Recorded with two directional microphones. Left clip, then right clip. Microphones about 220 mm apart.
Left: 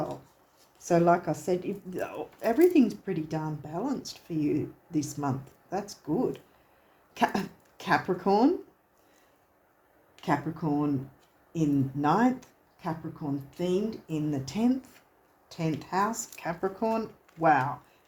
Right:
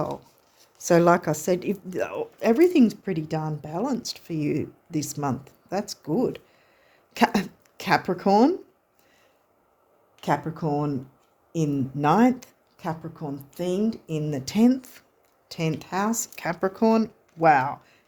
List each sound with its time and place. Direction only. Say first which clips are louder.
0.9 s a woman's voice: right 5 dB; 55° right (ahead or behind)
10.2 s a woman's voice: right 4 dB; 50° right (ahead or behind)